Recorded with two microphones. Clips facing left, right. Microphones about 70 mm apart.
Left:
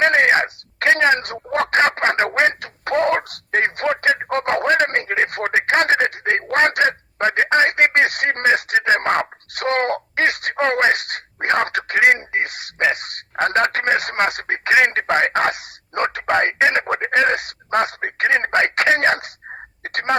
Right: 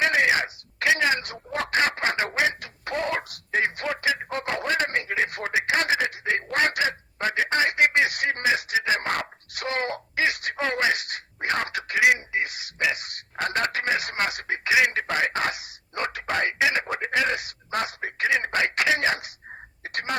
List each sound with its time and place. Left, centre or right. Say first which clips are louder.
0.0 s wail: left 6 dB; left
0.9 s a sound: left 7 dB; left
2.6 s a man's voice: left 9 dB; left
11.9 s speech: left 5 dB; left
12.3 s a man's voice: left 5 dB; left